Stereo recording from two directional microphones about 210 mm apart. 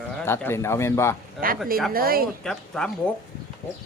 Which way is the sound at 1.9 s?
45° right (ahead or behind).